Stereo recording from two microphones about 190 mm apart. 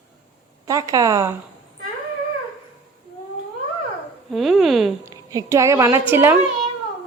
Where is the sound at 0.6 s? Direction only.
20° right (ahead or behind).